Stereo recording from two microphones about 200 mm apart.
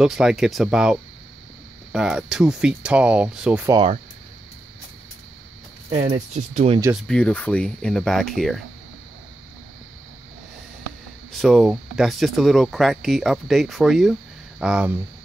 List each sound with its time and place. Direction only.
0.0 s speech: 5° right (ahead or behind)
3.7 s speech: 25° right (ahead or behind)
5.9 s speech: 35° right (ahead or behind)
7.0 s speech: 5° left (ahead or behind)
11.3 s speech: centre (ahead or behind)